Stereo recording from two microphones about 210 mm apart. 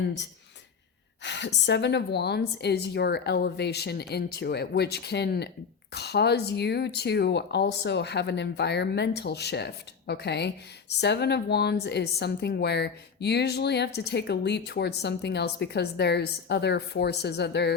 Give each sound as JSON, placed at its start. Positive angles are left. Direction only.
{"t": 1.2, "sound": "a woman's voice", "side_deg": 55}